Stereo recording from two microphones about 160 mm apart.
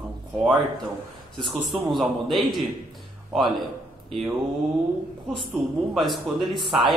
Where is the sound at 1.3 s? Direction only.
30° right (ahead or behind).